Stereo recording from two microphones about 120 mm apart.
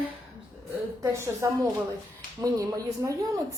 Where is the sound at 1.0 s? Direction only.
25° right (ahead or behind).